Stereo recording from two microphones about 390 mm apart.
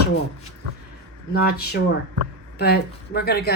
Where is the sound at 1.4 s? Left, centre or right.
Left.